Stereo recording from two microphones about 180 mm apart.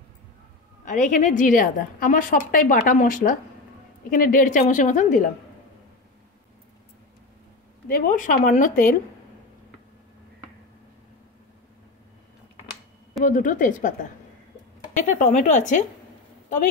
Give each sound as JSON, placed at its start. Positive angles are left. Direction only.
{"t": 0.8, "sound": "a woman's voice", "side_deg": 45}
{"t": 7.9, "sound": "a woman's voice", "side_deg": 50}
{"t": 13.2, "sound": "a woman's voice", "side_deg": 45}
{"t": 15.0, "sound": "speech", "side_deg": 40}